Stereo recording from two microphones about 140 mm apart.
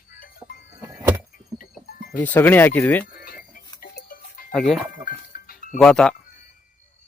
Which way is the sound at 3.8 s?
85° left.